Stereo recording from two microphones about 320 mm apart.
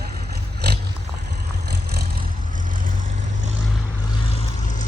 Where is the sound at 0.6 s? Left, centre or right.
Right.